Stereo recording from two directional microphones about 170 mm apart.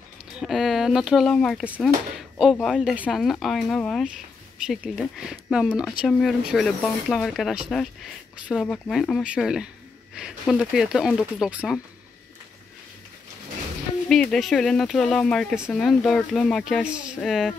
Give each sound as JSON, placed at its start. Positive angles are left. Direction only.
{"t": 0.4, "sound": "speech", "side_deg": 0}
{"t": 1.6, "sound": "speech", "side_deg": -5}
{"t": 2.1, "sound": "a sound", "side_deg": 0}
{"t": 2.5, "sound": "speech", "side_deg": 0}
{"t": 14.0, "sound": "speech", "side_deg": 5}